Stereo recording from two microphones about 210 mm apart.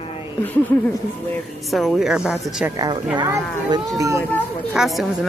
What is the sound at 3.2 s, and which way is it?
Speech, 20° right (ahead or behind).